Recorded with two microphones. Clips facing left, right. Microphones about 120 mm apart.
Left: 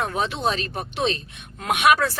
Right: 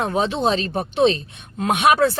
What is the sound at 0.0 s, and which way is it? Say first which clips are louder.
A woman's voice: right 4 dB; 25° right (ahead or behind).